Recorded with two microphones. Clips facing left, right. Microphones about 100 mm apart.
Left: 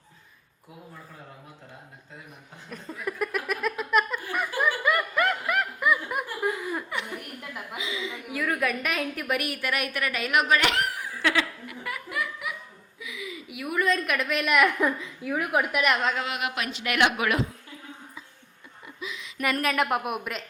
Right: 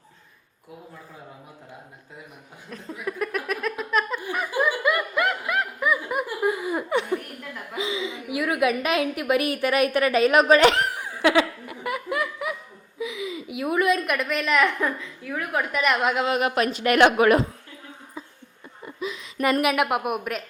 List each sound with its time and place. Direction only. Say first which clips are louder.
2.6 s a sound: right 2 dB; centre (ahead or behind)
4.8 s snicker: right 2 dB; centre (ahead or behind)
7.8 s a woman's voice: right 7 dB; 25° right (ahead or behind)
13.0 s a sound: right 8 dB; 25° right (ahead or behind)
14.1 s a woman's voice: right 2 dB; centre (ahead or behind)
15.8 s a woman's voice: right 5 dB; centre (ahead or behind)
16.2 s a woman's voice: right 8 dB; 35° right (ahead or behind)
18.9 s a sound: right 6 dB; 40° right (ahead or behind)
19.6 s a woman's voice: right 3 dB; 5° right (ahead or behind)